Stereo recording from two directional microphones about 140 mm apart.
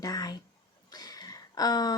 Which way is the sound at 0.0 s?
25° left (ahead or behind).